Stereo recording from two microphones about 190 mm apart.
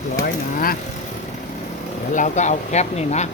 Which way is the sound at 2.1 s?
40° left (ahead or behind).